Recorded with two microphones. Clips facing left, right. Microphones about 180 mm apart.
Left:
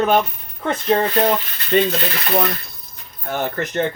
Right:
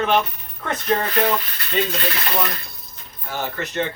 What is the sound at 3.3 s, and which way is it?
Speech, 50° left (ahead or behind).